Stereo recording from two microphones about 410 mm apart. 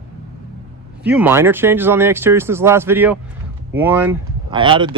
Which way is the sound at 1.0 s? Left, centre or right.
Centre.